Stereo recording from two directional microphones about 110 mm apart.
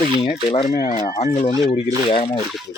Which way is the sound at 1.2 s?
90° left.